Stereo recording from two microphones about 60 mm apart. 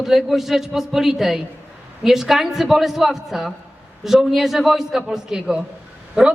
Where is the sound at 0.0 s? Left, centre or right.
Centre.